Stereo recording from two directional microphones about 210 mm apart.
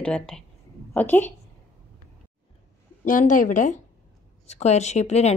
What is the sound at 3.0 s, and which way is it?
Speech, 40° left (ahead or behind).